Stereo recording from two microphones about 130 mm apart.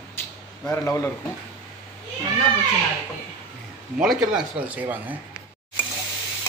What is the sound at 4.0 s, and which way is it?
Speech, 5° right (ahead or behind).